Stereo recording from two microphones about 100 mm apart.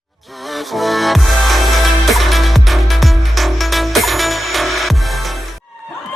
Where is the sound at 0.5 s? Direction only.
Centre (ahead or behind).